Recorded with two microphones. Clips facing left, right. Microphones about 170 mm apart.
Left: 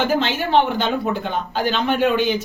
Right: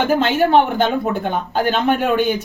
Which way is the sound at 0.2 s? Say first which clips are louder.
Right 4 dB; 50° right (ahead or behind).